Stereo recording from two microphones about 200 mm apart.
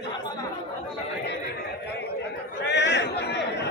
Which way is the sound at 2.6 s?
60° left (ahead or behind).